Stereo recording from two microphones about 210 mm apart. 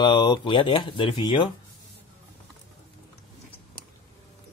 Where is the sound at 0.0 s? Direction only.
20° left (ahead or behind).